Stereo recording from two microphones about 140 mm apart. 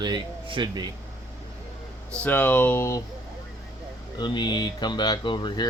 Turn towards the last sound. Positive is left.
turn(degrees=30)  # may be behind; listen again after turning